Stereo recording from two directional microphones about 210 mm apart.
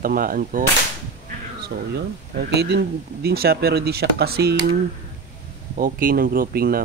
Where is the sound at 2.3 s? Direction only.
50° right (ahead or behind).